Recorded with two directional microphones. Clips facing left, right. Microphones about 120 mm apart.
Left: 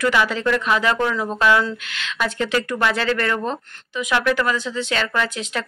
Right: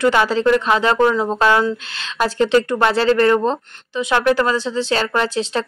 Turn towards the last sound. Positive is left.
turn(degrees=-30)  # may be behind; listen again after turning